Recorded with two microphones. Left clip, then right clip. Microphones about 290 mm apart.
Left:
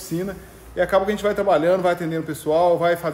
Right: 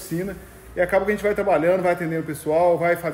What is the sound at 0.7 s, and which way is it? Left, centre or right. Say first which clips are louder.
A man's voice: left 1 dB; centre.